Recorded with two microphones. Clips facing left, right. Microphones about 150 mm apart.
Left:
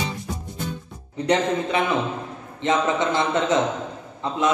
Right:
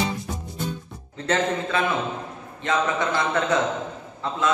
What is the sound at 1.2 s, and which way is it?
A man's voice, 15° left (ahead or behind).